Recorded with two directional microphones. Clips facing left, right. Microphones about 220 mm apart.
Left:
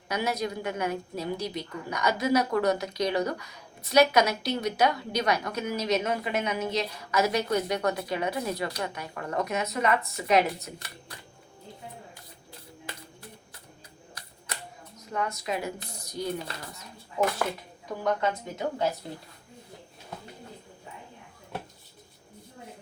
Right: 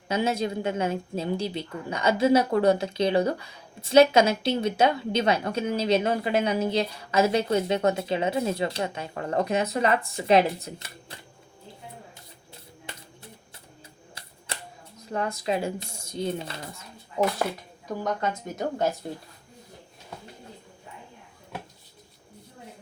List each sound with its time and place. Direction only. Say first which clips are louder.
0.1 s speech: right 4 dB; 25° right (ahead or behind)
14.2 s camera: right 2 dB; 25° right (ahead or behind)
15.1 s speech: right 4 dB; 30° right (ahead or behind)
18.2 s a woman's voice: even; 45° right (ahead or behind)